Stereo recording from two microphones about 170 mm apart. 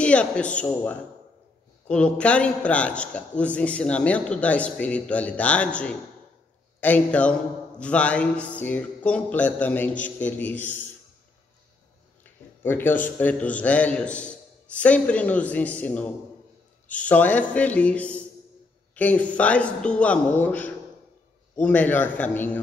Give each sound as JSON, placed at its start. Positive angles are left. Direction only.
{"t": 0.0, "sound": "a man's voice", "side_deg": 5}
{"t": 12.2, "sound": "a man's voice", "side_deg": 10}